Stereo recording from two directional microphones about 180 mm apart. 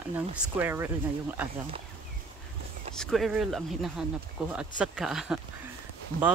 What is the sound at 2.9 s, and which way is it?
Speech, centre (ahead or behind).